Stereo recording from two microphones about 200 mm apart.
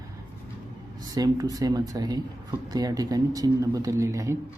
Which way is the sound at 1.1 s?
20° right (ahead or behind).